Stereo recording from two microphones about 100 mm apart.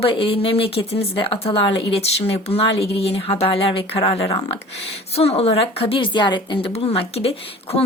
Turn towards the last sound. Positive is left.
turn(degrees=85)